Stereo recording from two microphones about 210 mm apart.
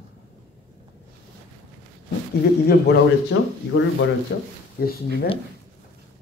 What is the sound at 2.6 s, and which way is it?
Speech, 55° left (ahead or behind).